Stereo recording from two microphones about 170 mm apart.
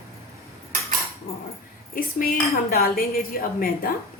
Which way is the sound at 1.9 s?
60° left (ahead or behind).